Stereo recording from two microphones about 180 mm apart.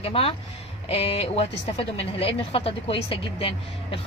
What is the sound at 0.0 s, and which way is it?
A woman's voice, 30° left (ahead or behind).